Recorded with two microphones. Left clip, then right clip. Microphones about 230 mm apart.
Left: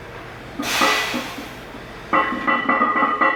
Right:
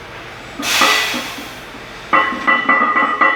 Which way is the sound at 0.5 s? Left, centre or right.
Centre.